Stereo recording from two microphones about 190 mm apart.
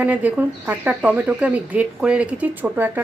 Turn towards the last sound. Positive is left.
turn(degrees=-10)  # may be behind; listen again after turning